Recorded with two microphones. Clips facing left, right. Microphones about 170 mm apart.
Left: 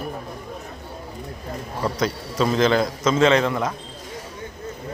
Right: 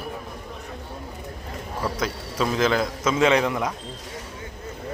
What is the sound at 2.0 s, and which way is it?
A man's voice, 5° right (ahead or behind).